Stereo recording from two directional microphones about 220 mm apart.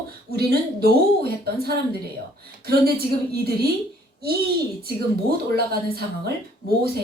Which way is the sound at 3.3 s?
45° right (ahead or behind).